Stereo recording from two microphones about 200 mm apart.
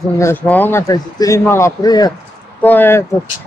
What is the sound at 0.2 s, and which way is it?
Speech, 10° left (ahead or behind).